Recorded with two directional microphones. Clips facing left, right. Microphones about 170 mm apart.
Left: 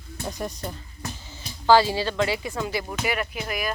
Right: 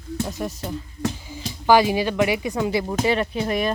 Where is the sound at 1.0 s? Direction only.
90° right.